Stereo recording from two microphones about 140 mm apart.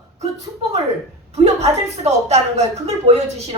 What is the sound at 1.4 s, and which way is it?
A woman's voice, 50° right (ahead or behind).